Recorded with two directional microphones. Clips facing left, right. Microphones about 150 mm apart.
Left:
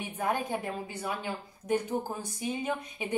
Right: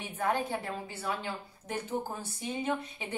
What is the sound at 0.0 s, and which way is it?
A woman's voice, 15° left (ahead or behind).